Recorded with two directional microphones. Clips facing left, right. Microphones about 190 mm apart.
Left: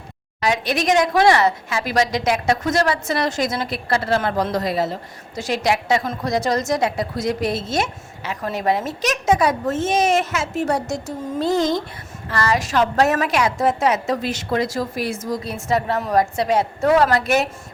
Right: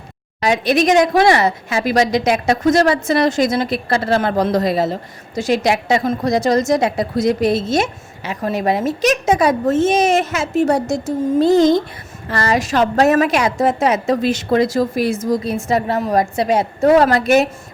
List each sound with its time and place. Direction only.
0.4 s a woman's voice: 20° right (ahead or behind)